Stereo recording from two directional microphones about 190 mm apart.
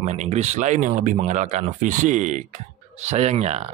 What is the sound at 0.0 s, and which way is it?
Speech, 35° right (ahead or behind).